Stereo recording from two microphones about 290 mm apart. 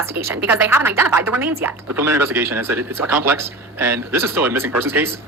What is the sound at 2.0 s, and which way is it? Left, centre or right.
Speech, right.